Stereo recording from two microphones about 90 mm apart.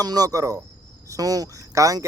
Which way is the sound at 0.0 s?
45° right (ahead or behind).